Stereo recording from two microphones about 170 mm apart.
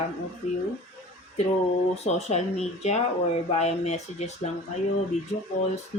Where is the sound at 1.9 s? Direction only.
40° left (ahead or behind).